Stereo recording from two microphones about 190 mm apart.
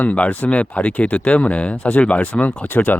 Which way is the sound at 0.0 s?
5° left (ahead or behind).